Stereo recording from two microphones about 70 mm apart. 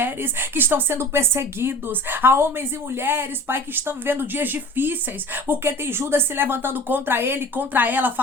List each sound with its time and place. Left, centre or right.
0.0 s speech: right